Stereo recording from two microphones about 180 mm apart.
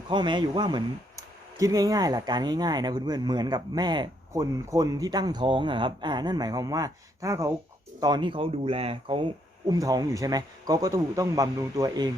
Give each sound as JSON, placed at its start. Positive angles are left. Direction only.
{"t": 0.1, "sound": "speech", "side_deg": -25}